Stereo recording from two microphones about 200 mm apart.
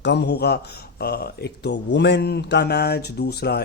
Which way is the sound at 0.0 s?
60° left (ahead or behind).